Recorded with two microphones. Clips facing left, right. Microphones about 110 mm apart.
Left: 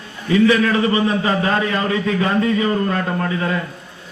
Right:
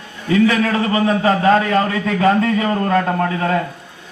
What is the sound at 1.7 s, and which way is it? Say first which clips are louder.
A man's voice: right 2 dB; 45° right (ahead or behind).